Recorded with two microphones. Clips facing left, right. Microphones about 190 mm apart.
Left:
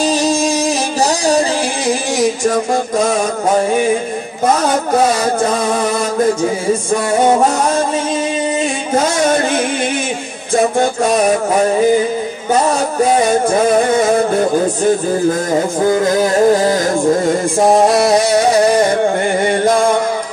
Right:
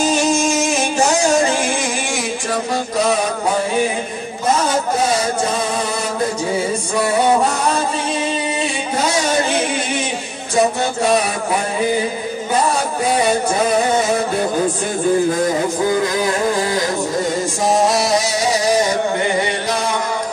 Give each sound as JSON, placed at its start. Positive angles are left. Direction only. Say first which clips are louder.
{"t": 0.0, "sound": "music", "louder": "left 2 dB", "side_deg": 35}
{"t": 1.9, "sound": "music", "louder": "left 7 dB", "side_deg": 40}
{"t": 8.9, "sound": "speech", "louder": "left 5 dB", "side_deg": 55}
{"t": 15.8, "sound": "music", "louder": "left 6 dB", "side_deg": 45}
{"t": 17.6, "sound": "a sound", "louder": "left 6 dB", "side_deg": 55}
{"t": 19.4, "sound": "music", "louder": "left 8 dB", "side_deg": 50}